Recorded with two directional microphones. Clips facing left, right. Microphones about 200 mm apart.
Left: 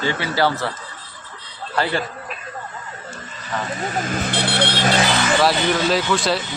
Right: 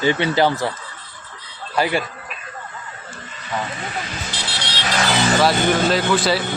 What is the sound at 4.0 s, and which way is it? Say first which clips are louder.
Vehicle: left 7 dB; 50° left (ahead or behind).